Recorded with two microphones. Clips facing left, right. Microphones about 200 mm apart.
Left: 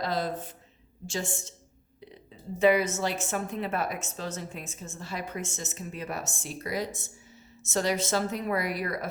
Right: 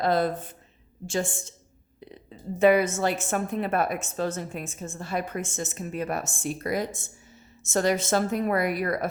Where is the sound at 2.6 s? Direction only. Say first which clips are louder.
Right 3 dB; 55° right (ahead or behind).